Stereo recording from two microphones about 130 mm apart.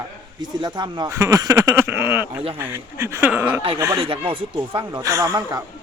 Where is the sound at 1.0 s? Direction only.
25° right (ahead or behind).